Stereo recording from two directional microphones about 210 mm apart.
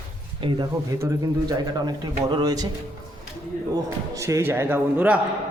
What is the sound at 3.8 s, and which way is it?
A man's voice, 15° right (ahead or behind).